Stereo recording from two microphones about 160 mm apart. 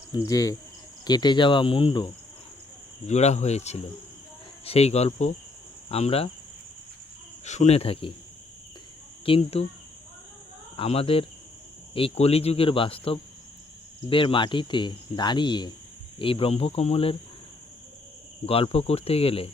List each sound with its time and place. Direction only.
0.3 s speech: 20° left (ahead or behind)
3.1 s speech: 45° left (ahead or behind)
7.4 s speech: 45° left (ahead or behind)
9.2 s speech: 35° left (ahead or behind)
10.8 s speech: 35° left (ahead or behind)
18.4 s speech: 35° left (ahead or behind)